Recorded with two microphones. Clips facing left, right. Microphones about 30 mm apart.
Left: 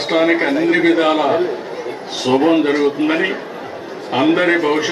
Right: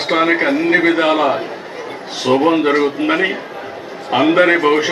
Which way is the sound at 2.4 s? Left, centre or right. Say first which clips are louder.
Left 1 dB; centre.